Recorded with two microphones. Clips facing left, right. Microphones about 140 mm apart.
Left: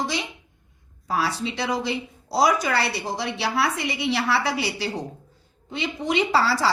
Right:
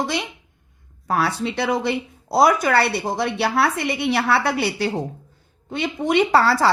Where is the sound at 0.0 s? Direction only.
55° right (ahead or behind).